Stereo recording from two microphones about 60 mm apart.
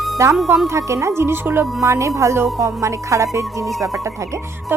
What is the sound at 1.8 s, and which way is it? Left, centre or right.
Speech, right.